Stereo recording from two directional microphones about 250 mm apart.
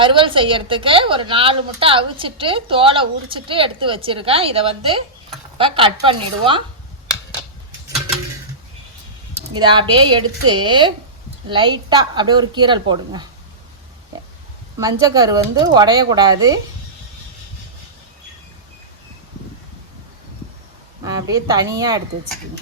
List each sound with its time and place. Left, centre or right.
0.0 s a woman's voice: centre
9.6 s a woman's voice: centre
14.8 s speech: centre
21.0 s speech: centre